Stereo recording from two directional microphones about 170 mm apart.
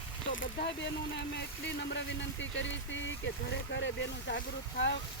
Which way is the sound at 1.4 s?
90° left.